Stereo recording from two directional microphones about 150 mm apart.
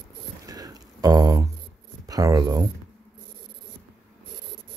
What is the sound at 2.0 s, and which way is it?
Speech, 25° right (ahead or behind).